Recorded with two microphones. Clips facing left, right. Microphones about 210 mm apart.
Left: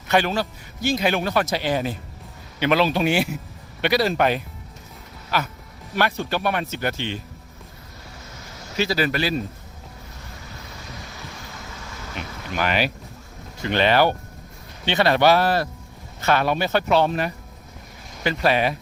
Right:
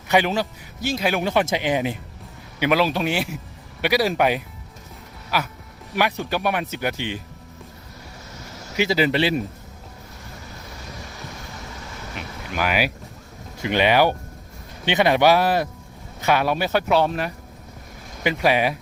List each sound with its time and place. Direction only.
0.1 s speech: 15° right (ahead or behind)
0.8 s speech: 5° right (ahead or behind)
1.2 s speech: 20° right (ahead or behind); by 3.2 s centre (ahead or behind)
3.8 s speech: 10° right (ahead or behind)
8.7 s speech: 15° right (ahead or behind)
12.5 s speech: 5° right (ahead or behind)
18.2 s speech: 15° right (ahead or behind)